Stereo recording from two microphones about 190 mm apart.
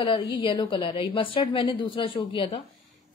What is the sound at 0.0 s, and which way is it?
A woman's voice, 25° left (ahead or behind).